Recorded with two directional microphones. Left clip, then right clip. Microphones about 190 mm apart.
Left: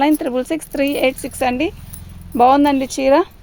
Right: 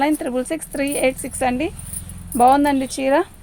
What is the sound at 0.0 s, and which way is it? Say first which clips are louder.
Speech: left 3 dB; 45° left (ahead or behind).